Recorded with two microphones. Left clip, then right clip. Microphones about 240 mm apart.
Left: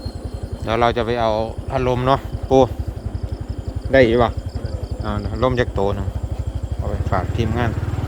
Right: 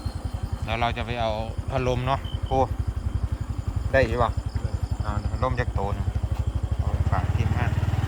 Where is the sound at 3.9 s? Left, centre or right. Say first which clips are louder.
Left 8 dB; left.